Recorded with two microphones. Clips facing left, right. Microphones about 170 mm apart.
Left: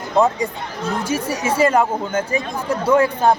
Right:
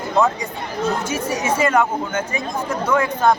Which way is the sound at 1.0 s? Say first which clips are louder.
Left 1 dB; 35° left (ahead or behind).